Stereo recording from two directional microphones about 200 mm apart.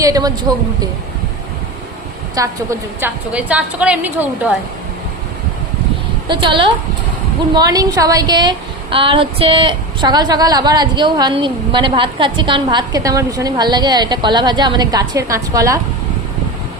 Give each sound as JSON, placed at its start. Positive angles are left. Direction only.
{"t": 0.0, "sound": "a woman's voice", "side_deg": -20}
{"t": 2.3, "sound": "a woman's voice", "side_deg": -15}
{"t": 6.2, "sound": "speech", "side_deg": -25}